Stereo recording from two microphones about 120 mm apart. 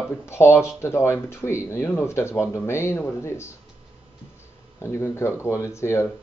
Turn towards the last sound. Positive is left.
turn(degrees=25)  # may be behind; listen again after turning